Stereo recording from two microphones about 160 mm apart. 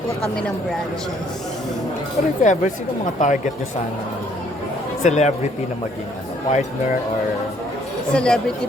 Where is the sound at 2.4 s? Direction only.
50° left (ahead or behind).